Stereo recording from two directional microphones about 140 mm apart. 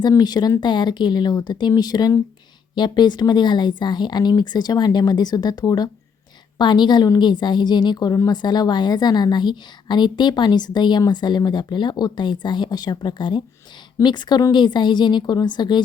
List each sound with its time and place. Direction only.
0.0 s a woman's voice: 30° left (ahead or behind)